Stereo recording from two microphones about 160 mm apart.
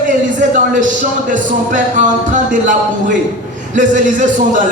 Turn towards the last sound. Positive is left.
turn(degrees=-55)  # may be behind; listen again after turning